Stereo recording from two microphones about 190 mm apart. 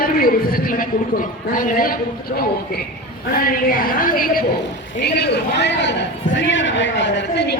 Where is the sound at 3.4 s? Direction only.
50° left (ahead or behind).